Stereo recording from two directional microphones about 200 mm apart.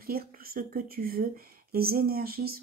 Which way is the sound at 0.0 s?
50° right (ahead or behind).